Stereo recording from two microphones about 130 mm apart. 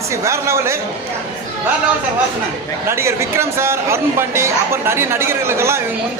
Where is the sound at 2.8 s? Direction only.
20° right (ahead or behind).